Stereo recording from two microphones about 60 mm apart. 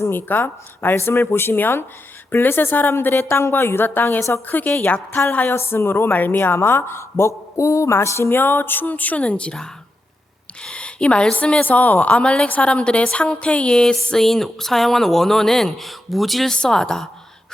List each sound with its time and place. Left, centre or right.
0.0 s a woman's voice: left
0.9 s a woman's voice: left
5.5 s a woman's voice: left
10.6 s a woman's voice: centre
11.6 s a woman's voice: left; by 17.1 s centre